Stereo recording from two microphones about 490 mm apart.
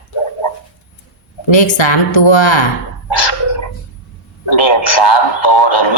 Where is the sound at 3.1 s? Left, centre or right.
Left.